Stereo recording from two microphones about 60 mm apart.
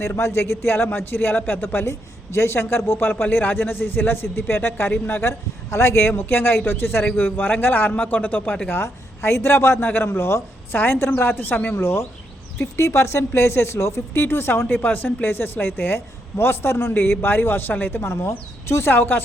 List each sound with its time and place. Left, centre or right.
0.0 s a man's voice: left
5.7 s a man's voice: left
8.8 s a man's voice: left
12.5 s a man's voice: left